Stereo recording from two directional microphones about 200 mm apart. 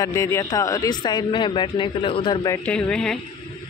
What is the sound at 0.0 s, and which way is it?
Speech, 15° left (ahead or behind).